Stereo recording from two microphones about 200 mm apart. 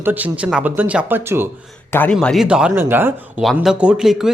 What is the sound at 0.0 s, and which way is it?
Speech, 10° right (ahead or behind).